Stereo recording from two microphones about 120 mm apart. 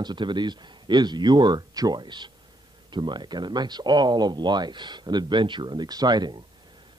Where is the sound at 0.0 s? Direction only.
40° right (ahead or behind).